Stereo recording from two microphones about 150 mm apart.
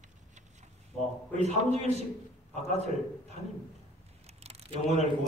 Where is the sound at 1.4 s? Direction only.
45° right (ahead or behind).